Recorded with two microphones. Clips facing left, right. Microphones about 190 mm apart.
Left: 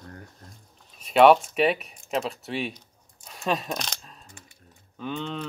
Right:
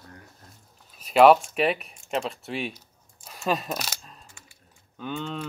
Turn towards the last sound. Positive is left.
turn(degrees=0)  # may be behind; listen again after turning